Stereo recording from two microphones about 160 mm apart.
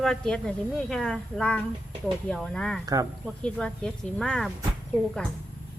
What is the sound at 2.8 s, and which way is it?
Speech, 20° right (ahead or behind).